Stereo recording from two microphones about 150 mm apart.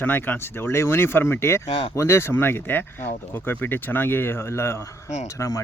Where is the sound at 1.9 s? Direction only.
20° left (ahead or behind).